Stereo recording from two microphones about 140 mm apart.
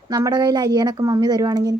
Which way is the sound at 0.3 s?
30° right (ahead or behind).